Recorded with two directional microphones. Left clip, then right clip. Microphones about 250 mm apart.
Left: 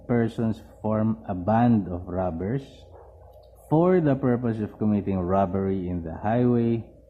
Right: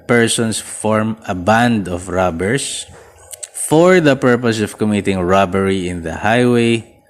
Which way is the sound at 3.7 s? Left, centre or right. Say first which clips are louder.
Right 11 dB; right.